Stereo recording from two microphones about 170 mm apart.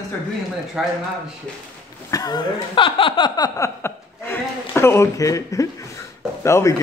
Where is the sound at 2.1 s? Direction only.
20° left (ahead or behind).